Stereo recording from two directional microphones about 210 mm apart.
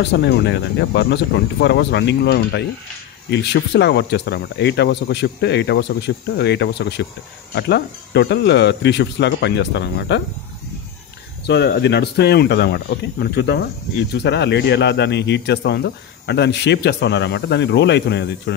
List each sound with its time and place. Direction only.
0.0 s speech: 55° left (ahead or behind)
11.4 s speech: 50° left (ahead or behind)